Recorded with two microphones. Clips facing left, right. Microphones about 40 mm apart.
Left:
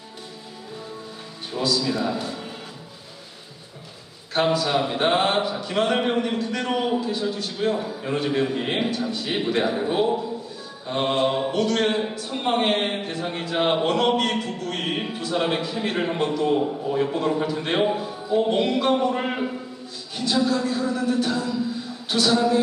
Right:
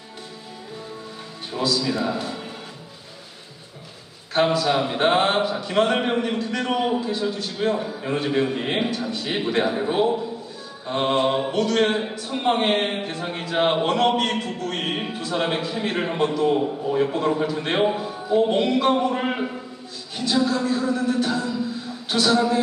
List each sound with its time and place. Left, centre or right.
1.5 s a man's voice: centre
4.4 s a man's voice: centre
11.8 s speech: centre
12.4 s a man's voice: centre